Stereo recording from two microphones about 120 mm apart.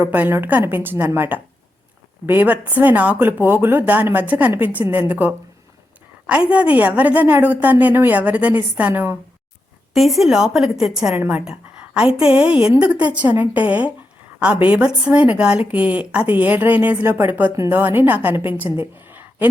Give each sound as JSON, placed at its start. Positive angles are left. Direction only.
{"t": 0.0, "sound": "speech", "side_deg": -15}
{"t": 9.9, "sound": "a woman's voice", "side_deg": 0}
{"t": 11.1, "sound": "a woman's voice", "side_deg": -15}